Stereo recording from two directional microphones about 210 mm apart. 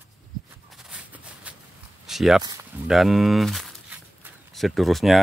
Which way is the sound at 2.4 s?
20° right (ahead or behind).